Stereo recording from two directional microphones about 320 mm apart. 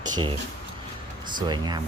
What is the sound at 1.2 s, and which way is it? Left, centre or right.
Speech, centre.